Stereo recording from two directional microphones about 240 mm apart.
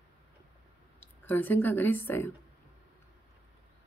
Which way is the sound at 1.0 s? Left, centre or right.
Centre.